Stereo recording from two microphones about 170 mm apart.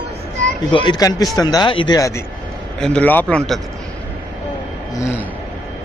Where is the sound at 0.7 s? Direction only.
30° left (ahead or behind).